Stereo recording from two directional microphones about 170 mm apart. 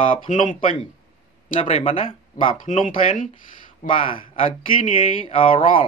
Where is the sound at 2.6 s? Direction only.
50° left (ahead or behind).